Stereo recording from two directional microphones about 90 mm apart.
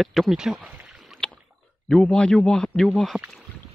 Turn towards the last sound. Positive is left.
turn(degrees=0)  # may be behind; listen again after turning